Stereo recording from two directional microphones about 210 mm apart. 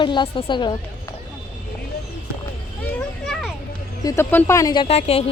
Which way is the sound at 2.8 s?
5° left (ahead or behind).